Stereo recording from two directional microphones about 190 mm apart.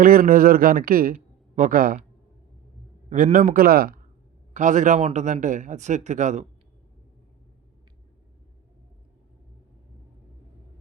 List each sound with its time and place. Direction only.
0.0 s speech: 50° right (ahead or behind)
3.1 s speech: 45° right (ahead or behind)